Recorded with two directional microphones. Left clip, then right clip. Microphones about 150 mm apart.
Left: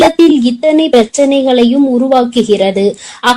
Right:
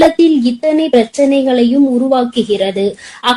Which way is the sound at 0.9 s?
40° left (ahead or behind).